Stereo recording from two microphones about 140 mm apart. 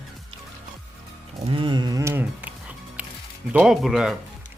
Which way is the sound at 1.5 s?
35° right (ahead or behind).